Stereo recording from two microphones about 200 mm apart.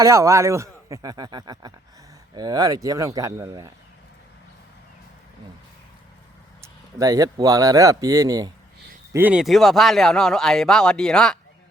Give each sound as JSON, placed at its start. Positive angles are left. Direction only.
{"t": 0.0, "sound": "speech", "side_deg": -15}
{"t": 6.6, "sound": "speech", "side_deg": -15}
{"t": 9.1, "sound": "speech", "side_deg": -5}